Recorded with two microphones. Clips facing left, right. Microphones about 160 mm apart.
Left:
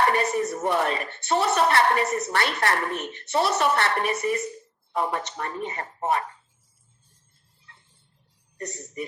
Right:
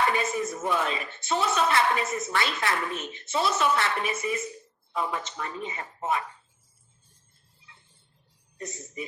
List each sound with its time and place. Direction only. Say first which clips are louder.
0.0 s speech: left 4 dB; 65° left (ahead or behind)
8.5 s a woman's voice: left 3 dB; 65° left (ahead or behind)